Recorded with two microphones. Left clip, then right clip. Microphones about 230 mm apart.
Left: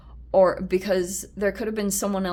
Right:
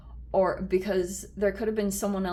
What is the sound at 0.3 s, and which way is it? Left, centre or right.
Speech, left.